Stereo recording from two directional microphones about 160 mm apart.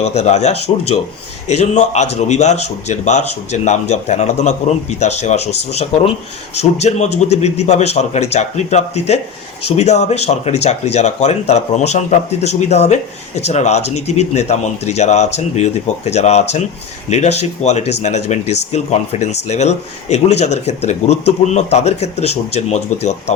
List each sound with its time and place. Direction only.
0.0 s speech: 45° left (ahead or behind)